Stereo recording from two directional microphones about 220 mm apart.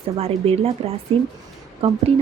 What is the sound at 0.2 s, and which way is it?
Speech, 25° right (ahead or behind).